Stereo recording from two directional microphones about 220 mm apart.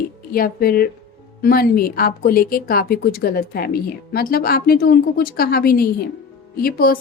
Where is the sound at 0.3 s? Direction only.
40° left (ahead or behind).